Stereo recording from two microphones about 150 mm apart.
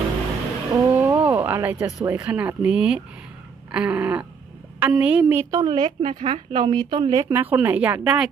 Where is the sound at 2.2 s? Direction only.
10° right (ahead or behind).